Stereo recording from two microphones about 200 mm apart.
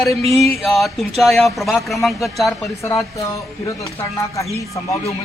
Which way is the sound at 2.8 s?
15° left (ahead or behind).